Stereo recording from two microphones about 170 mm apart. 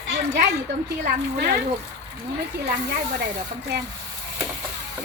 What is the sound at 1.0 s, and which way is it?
Speech, 55° right (ahead or behind).